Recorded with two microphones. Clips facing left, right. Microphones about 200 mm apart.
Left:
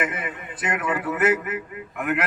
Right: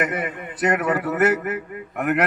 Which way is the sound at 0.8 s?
65° right (ahead or behind).